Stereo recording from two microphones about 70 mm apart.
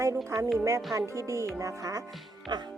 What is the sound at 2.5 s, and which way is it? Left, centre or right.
Speech, right.